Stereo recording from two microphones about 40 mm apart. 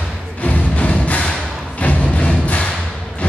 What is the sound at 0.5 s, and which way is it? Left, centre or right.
Music, left.